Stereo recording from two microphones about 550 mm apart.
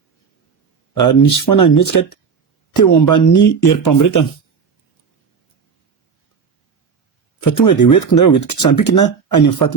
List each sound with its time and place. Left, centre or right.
0.9 s speech: left
7.4 s speech: left